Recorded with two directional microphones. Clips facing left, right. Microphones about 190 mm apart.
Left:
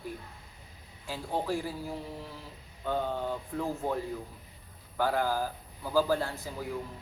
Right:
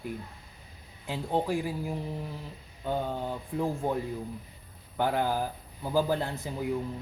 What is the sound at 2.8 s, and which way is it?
Speech, 15° right (ahead or behind).